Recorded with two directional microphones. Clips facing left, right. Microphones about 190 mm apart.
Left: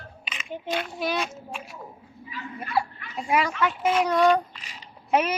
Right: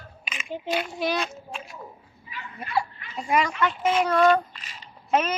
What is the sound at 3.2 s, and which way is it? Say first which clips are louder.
Speech: even; 10° left (ahead or behind).